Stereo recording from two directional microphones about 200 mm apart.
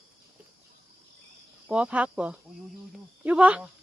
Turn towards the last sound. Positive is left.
turn(degrees=-5)  # may be behind; listen again after turning